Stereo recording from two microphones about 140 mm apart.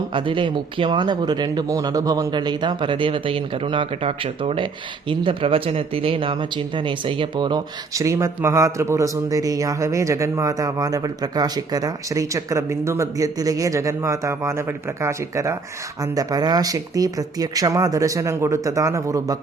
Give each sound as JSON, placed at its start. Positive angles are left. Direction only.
{"t": 0.1, "sound": "speech", "side_deg": -35}